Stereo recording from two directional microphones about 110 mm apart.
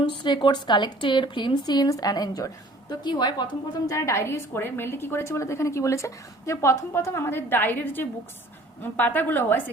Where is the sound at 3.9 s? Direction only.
25° left (ahead or behind).